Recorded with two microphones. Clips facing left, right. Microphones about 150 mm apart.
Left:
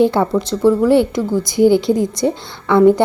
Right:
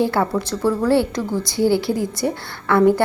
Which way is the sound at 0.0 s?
20° left (ahead or behind).